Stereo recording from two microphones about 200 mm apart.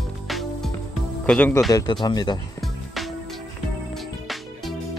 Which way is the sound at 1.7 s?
20° left (ahead or behind).